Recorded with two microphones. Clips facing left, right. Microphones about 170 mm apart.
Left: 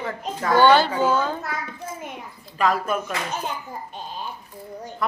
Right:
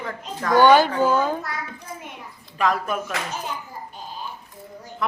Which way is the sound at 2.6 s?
Centre (ahead or behind).